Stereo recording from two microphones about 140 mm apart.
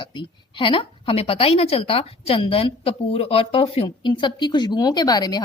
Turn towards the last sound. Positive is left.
turn(degrees=30)  # may be behind; listen again after turning